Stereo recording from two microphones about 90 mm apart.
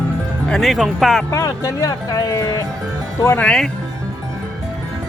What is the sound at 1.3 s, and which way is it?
Speech, 35° left (ahead or behind).